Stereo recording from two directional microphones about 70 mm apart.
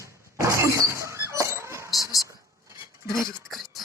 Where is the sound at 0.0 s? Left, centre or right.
Right.